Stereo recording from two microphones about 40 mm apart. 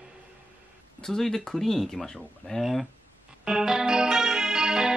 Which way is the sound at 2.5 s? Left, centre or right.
Left.